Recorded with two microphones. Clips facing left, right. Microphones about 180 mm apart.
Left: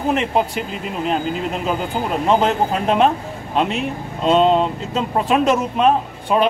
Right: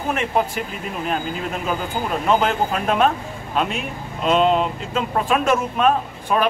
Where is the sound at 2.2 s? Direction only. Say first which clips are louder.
Left 2 dB; 30° left (ahead or behind).